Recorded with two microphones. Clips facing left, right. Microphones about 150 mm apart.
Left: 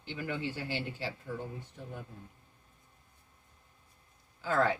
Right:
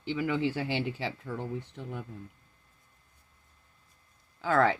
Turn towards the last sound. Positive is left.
turn(degrees=-75)  # may be behind; listen again after turning